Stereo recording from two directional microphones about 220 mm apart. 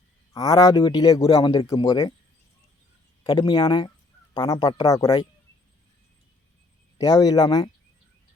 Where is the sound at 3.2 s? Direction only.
20° left (ahead or behind).